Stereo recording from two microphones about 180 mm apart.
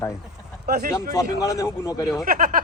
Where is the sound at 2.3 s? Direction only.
50° right (ahead or behind).